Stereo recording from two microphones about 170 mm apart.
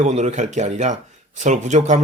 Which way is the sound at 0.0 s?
40° right (ahead or behind).